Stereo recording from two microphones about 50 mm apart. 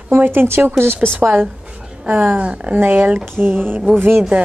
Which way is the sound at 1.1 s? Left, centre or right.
Right.